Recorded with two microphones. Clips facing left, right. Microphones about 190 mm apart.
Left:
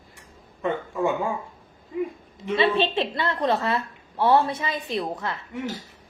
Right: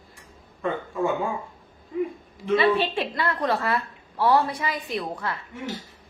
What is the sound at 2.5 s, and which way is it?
A woman's voice, 25° left (ahead or behind).